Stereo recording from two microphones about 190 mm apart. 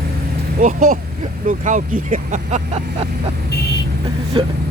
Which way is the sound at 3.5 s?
60° left (ahead or behind).